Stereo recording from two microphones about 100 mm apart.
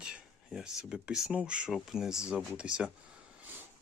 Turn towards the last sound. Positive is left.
turn(degrees=-20)  # may be behind; listen again after turning